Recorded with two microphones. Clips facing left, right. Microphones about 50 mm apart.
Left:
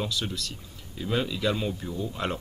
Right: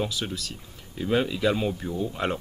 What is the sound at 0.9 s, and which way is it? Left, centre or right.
Speech, centre.